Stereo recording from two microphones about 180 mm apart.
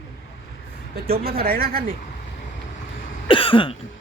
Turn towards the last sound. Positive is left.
turn(degrees=30)  # may be behind; listen again after turning